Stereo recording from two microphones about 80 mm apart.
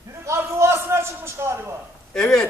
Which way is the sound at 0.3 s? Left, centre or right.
Right.